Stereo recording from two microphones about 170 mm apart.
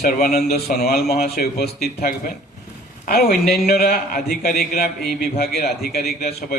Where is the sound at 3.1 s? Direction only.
65° left (ahead or behind).